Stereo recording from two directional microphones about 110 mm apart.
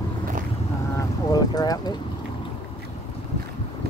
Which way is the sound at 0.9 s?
35° left (ahead or behind).